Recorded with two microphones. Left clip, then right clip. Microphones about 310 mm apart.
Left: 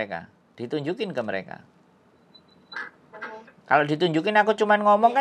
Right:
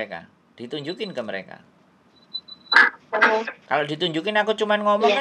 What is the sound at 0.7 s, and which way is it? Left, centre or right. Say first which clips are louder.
Speech: left 1 dB; left.